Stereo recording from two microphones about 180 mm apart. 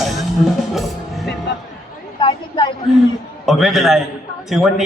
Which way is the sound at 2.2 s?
25° left (ahead or behind).